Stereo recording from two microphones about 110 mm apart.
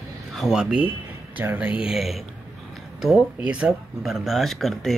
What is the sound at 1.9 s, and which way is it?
Speech, centre (ahead or behind).